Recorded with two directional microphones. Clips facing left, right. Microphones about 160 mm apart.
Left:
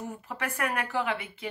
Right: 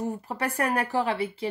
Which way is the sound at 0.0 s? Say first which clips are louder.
Right 6 dB; 35° right (ahead or behind).